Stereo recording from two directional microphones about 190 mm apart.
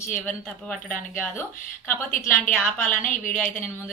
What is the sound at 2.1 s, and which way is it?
Speech, 45° left (ahead or behind).